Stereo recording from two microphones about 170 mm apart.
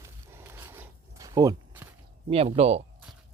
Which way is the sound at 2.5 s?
35° right (ahead or behind).